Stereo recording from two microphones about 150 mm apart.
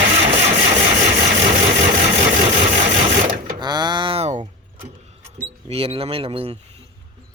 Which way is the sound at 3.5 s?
30° right (ahead or behind).